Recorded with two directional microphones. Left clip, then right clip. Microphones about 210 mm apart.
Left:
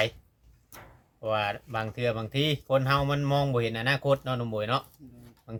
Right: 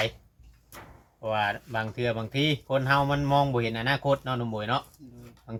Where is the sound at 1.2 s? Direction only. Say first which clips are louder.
Right 1 dB; 55° left (ahead or behind).